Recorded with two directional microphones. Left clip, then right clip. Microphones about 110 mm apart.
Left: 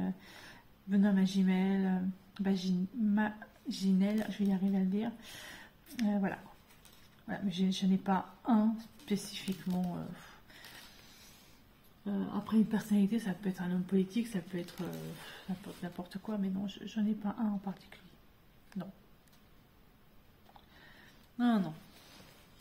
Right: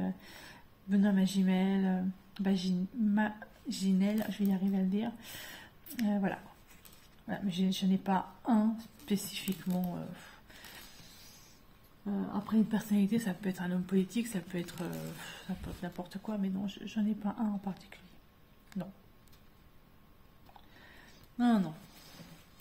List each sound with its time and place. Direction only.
0.0 s a woman's voice: 25° right (ahead or behind)
10.1 s a sound: 25° right (ahead or behind)
12.3 s a woman's voice: 15° right (ahead or behind)
12.9 s a woman's voice: 45° right (ahead or behind)
13.3 s speech: 60° right (ahead or behind)
16.0 s a woman's voice: 30° right (ahead or behind)
20.5 s a sound: 30° right (ahead or behind)